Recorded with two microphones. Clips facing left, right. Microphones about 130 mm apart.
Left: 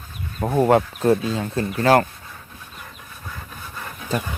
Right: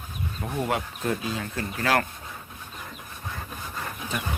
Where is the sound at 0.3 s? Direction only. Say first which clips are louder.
Left 11 dB; 45° left (ahead or behind).